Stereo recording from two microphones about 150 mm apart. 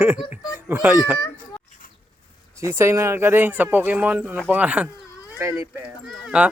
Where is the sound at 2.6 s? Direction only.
15° right (ahead or behind).